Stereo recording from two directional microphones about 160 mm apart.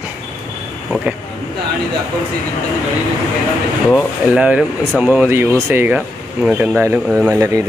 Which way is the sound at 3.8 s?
Centre (ahead or behind).